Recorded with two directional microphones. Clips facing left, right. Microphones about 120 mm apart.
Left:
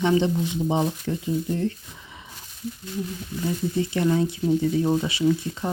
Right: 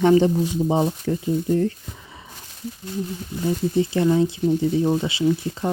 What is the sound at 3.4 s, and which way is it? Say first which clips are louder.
Speech: right 4 dB; 30° right (ahead or behind).